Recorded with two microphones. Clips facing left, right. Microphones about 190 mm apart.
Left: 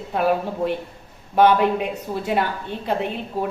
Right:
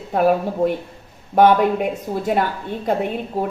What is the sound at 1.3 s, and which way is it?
A woman's voice, 45° right (ahead or behind).